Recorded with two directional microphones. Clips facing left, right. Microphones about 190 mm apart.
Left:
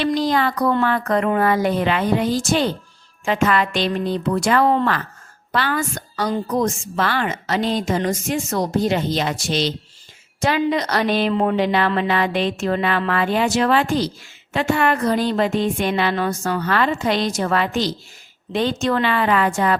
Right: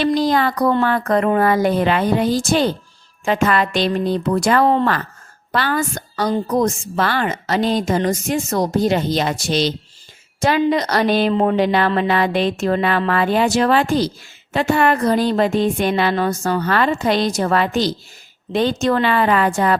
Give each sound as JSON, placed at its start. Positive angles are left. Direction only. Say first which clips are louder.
{"t": 0.0, "sound": "a woman's voice", "louder": "right 2 dB", "side_deg": -40}